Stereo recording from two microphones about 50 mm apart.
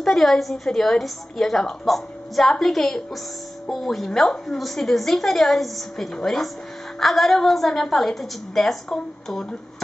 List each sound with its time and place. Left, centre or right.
0.0 s a woman's voice: centre